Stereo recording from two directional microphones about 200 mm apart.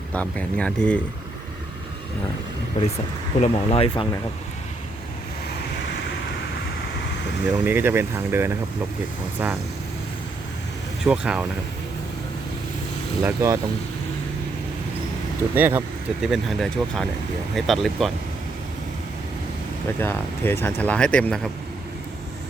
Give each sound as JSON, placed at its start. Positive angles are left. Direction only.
{"t": 0.1, "sound": "speech", "side_deg": 5}
{"t": 2.8, "sound": "speech", "side_deg": 30}
{"t": 7.4, "sound": "speech", "side_deg": -10}
{"t": 11.0, "sound": "speech", "side_deg": -5}
{"t": 13.2, "sound": "speech", "side_deg": -15}
{"t": 15.5, "sound": "speech", "side_deg": -10}
{"t": 16.2, "sound": "speech", "side_deg": 0}
{"t": 20.0, "sound": "speech", "side_deg": 10}